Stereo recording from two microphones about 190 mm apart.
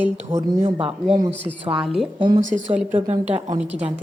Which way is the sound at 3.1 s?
35° right (ahead or behind).